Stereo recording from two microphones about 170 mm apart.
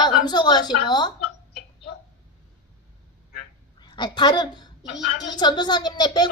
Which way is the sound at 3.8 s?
25° left (ahead or behind).